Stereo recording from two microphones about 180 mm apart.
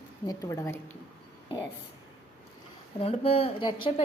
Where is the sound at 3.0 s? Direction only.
35° left (ahead or behind).